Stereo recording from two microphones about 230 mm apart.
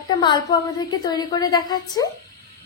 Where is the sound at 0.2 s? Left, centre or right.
Centre.